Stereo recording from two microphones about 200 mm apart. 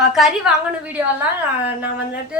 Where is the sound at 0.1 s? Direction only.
Centre (ahead or behind).